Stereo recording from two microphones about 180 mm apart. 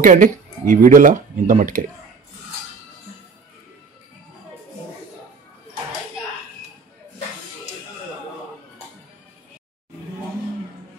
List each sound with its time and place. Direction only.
0.0 s speech: 45° right (ahead or behind)